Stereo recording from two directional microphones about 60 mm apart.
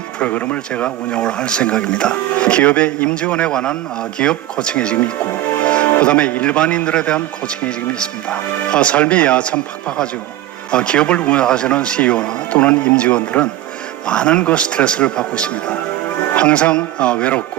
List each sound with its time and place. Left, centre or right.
0.2 s speech: left